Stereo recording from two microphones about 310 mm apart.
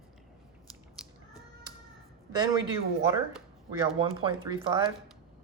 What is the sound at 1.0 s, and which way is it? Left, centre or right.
Cat, centre.